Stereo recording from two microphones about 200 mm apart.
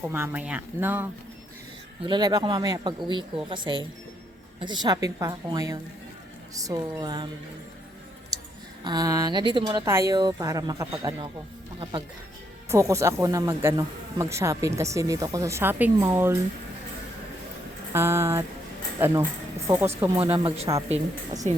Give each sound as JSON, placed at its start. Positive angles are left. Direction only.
{"t": 0.0, "sound": "speech", "side_deg": -10}
{"t": 2.0, "sound": "speech", "side_deg": -20}
{"t": 8.3, "sound": "a sound", "side_deg": -20}
{"t": 8.8, "sound": "speech", "side_deg": -20}
{"t": 17.9, "sound": "speech", "side_deg": -10}
{"t": 20.1, "sound": "speech", "side_deg": -25}